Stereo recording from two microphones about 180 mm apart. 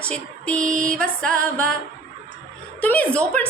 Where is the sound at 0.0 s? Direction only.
5° left (ahead or behind).